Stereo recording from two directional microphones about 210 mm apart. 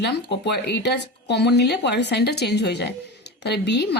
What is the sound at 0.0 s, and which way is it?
Speech, 55° left (ahead or behind).